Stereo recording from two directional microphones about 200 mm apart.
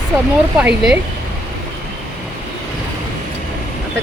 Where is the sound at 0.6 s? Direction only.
5° right (ahead or behind).